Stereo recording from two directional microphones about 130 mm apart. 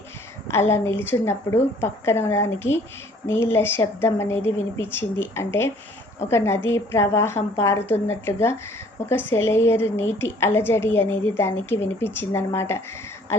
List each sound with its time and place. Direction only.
0.7 s a woman's voice: 20° left (ahead or behind)